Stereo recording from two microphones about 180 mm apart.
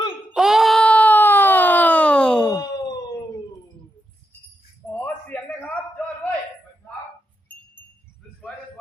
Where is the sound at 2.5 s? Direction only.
20° left (ahead or behind).